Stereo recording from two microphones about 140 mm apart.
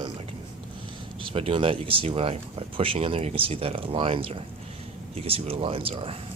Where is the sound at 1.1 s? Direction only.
40° right (ahead or behind).